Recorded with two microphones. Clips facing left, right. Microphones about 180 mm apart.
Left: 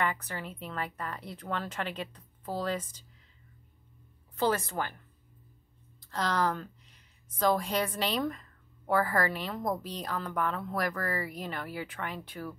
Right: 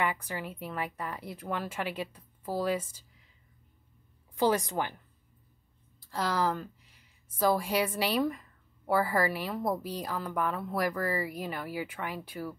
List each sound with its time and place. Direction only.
0.0 s a woman's voice: 10° right (ahead or behind)
4.4 s a woman's voice: 15° right (ahead or behind)
6.0 s a woman's voice: 10° right (ahead or behind)